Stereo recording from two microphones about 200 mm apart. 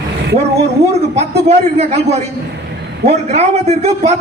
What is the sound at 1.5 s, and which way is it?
A man's voice, 30° right (ahead or behind).